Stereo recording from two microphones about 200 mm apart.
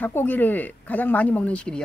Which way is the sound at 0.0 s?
10° left (ahead or behind).